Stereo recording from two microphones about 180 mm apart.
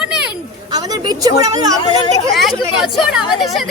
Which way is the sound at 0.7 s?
20° right (ahead or behind).